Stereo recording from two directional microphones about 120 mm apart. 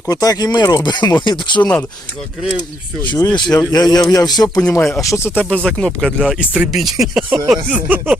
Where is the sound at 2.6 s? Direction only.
35° left (ahead or behind).